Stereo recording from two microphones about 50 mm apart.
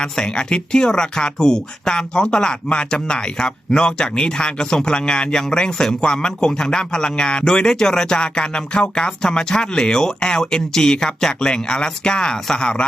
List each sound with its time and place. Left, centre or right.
0.0 s speech: centre